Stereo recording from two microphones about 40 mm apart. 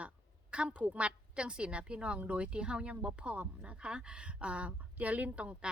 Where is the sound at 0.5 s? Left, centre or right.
Right.